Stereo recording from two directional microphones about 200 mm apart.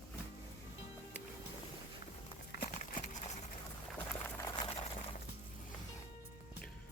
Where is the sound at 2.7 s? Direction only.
35° left (ahead or behind).